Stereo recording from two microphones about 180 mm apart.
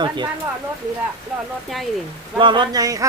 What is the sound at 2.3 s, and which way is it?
Speech, 25° right (ahead or behind).